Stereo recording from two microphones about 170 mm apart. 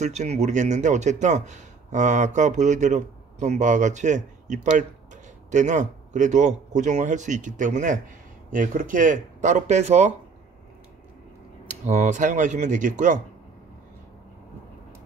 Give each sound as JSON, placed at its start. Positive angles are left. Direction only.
{"t": 0.0, "sound": "a man's voice", "side_deg": -40}
{"t": 11.6, "sound": "a man's voice", "side_deg": -45}